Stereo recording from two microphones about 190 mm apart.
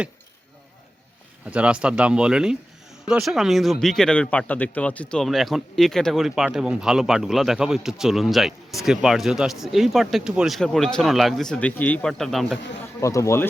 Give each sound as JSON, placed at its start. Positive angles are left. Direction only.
{"t": 1.5, "sound": "a man's voice", "side_deg": -5}
{"t": 13.0, "sound": "speech", "side_deg": 15}